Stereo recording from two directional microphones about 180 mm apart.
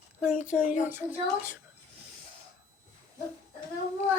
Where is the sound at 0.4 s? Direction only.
5° right (ahead or behind).